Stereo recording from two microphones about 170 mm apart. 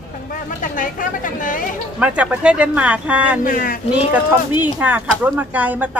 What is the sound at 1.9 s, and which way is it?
Speech, 5° right (ahead or behind).